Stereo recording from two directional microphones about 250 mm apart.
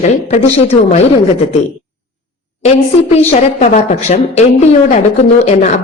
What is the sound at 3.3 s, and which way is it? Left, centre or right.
A woman's voice, left.